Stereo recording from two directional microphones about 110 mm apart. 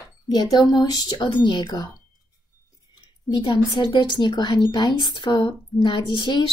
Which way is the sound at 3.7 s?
45° left (ahead or behind).